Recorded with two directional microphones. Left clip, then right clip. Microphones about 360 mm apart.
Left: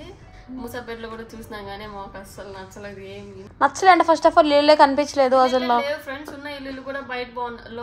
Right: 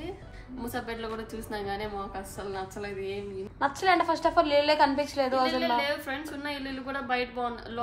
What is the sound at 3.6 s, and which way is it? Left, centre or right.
A woman's voice, left.